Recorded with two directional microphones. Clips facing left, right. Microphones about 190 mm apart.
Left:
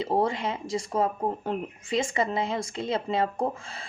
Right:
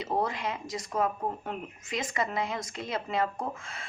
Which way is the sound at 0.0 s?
30° left (ahead or behind).